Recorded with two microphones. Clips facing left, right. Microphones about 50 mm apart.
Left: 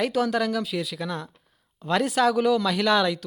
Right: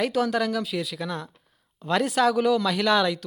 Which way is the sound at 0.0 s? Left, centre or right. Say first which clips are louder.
Even; centre.